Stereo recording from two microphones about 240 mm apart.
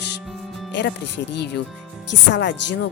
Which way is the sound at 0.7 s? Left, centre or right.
Left.